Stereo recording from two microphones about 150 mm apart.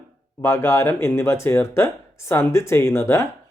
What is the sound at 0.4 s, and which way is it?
Speech, 15° left (ahead or behind).